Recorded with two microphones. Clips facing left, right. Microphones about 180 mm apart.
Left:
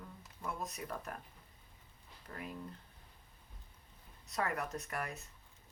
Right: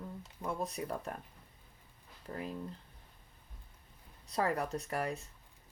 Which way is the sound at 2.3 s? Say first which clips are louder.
Right 5 dB; 30° right (ahead or behind).